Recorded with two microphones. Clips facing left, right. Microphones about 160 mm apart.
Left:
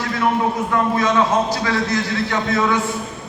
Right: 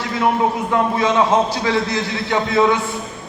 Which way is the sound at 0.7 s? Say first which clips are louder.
Left 1 dB; 20° right (ahead or behind).